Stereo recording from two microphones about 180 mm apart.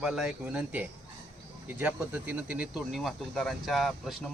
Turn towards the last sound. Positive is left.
turn(degrees=0)  # may be behind; listen again after turning